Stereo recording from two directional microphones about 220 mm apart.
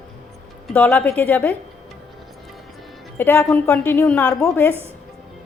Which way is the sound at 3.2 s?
10° left (ahead or behind).